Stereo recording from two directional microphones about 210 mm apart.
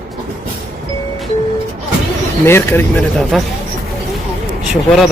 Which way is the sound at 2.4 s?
10° left (ahead or behind).